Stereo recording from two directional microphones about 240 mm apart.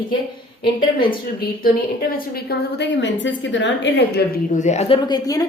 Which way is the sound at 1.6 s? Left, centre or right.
Left.